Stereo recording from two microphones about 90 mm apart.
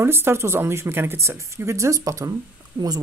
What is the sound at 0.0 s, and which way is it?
Speech, 25° right (ahead or behind).